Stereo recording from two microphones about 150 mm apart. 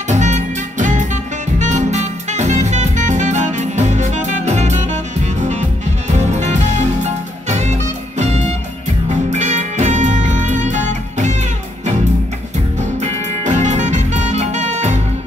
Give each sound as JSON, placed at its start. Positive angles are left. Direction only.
{"t": 0.1, "sound": "music", "side_deg": -50}
{"t": 13.0, "sound": "music", "side_deg": -55}